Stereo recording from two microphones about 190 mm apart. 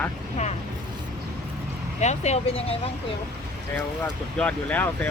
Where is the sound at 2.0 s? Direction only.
35° left (ahead or behind).